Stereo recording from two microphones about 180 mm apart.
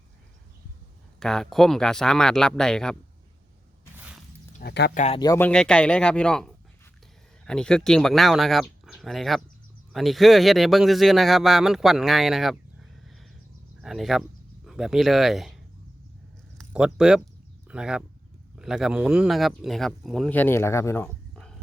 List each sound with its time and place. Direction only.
1.2 s speech: 5° left (ahead or behind)
3.9 s a sound: 5° right (ahead or behind)
4.6 s speech: 65° left (ahead or behind)
4.9 s speech: 35° left (ahead or behind)
5.2 s speech: 20° left (ahead or behind)
5.5 s speech: 5° left (ahead or behind)
13.8 s speech: centre (ahead or behind)
16.6 s a sound: 5° right (ahead or behind)
17.7 s speech: 5° right (ahead or behind)